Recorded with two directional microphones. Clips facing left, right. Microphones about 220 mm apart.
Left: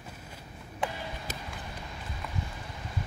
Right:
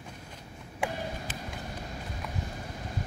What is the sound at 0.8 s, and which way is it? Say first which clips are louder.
Vehicle: right 1 dB; 10° right (ahead or behind).